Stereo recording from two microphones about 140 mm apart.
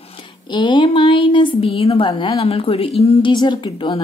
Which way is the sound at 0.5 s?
35° left (ahead or behind).